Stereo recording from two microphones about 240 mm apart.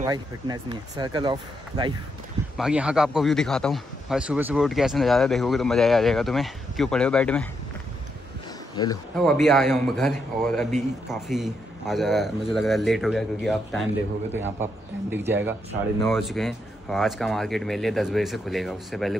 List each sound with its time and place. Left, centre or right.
0.0 s speech: centre
2.5 s speech: centre
8.8 s speech: centre
9.1 s speech: centre